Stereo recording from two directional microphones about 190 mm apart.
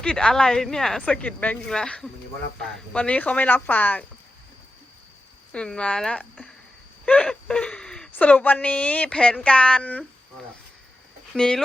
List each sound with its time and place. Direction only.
0.0 s speech: 5° left (ahead or behind)
5.5 s speech: 5° left (ahead or behind)
11.3 s speech: 5° left (ahead or behind)